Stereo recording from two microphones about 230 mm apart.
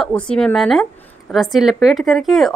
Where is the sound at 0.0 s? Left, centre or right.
Centre.